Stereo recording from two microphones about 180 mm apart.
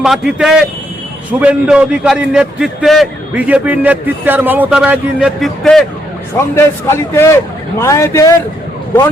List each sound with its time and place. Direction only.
0.0 s a man's voice: centre (ahead or behind)
6.3 s a man's voice: 15° left (ahead or behind)